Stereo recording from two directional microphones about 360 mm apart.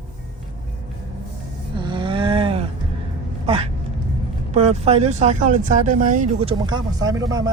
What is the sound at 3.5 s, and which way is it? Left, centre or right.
Speech, centre.